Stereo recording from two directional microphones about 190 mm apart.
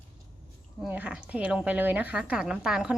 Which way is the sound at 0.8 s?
5° right (ahead or behind).